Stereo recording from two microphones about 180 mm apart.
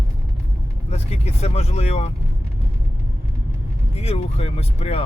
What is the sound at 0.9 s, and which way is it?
Speech, 35° left (ahead or behind).